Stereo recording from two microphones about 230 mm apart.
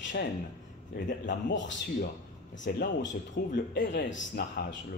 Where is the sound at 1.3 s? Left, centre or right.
Left.